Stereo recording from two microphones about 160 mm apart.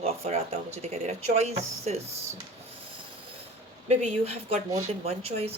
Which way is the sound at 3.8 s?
45° right (ahead or behind).